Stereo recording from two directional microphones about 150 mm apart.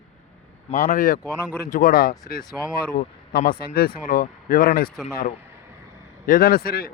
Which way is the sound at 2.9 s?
85° left.